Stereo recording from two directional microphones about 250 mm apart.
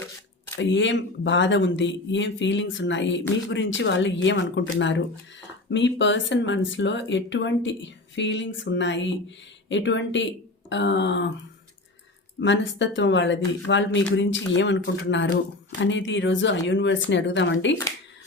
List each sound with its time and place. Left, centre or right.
0.6 s speech: left
12.4 s speech: left